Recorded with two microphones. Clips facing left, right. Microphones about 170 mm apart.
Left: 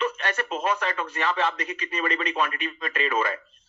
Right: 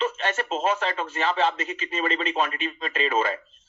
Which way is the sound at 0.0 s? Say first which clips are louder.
Right 1 dB; 25° right (ahead or behind).